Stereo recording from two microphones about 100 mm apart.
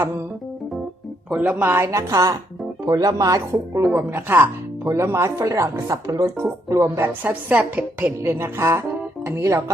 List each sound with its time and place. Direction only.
1.3 s a woman's voice: 15° right (ahead or behind); by 3.4 s 35° right (ahead or behind)
3.9 s a woman's voice: 20° right (ahead or behind)